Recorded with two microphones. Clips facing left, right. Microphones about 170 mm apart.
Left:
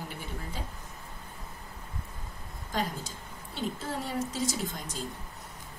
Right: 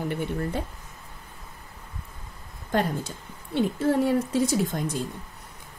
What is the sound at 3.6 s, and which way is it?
Speech, 60° right (ahead or behind).